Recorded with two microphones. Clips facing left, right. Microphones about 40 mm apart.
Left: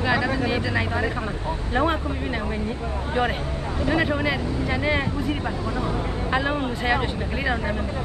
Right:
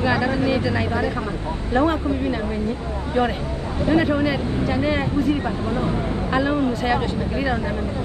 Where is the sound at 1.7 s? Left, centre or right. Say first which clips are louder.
Right 4 dB; left.